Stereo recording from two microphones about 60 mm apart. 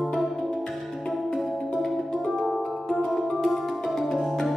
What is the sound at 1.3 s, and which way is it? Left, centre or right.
Music, centre.